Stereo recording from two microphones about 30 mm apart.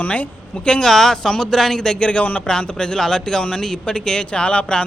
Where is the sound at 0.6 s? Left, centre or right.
Left.